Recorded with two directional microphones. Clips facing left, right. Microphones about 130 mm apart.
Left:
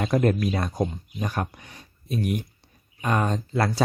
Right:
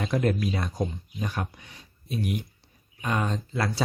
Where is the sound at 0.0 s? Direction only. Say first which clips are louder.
Left 4 dB; 45° left (ahead or behind).